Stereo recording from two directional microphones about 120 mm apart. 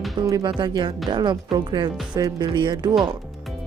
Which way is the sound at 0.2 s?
30° right (ahead or behind).